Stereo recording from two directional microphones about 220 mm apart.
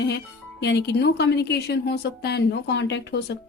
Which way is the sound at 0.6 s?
50° left (ahead or behind).